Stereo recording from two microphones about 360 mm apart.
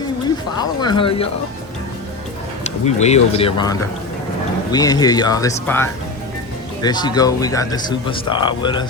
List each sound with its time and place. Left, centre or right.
0.6 s speech: centre
2.8 s speech: centre